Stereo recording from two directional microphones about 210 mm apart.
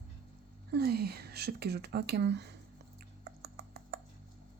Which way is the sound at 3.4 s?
50° right (ahead or behind).